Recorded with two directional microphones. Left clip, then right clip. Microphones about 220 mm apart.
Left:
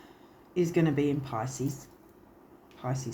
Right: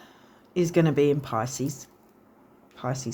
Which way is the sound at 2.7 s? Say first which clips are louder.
Right 5 dB; 50° right (ahead or behind).